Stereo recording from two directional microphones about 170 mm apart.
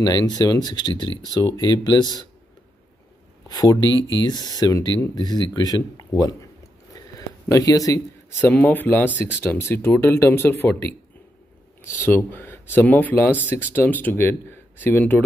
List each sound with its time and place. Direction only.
0.0 s speech: 20° left (ahead or behind)
3.4 s speech: 20° left (ahead or behind)
12.0 s speech: 10° left (ahead or behind)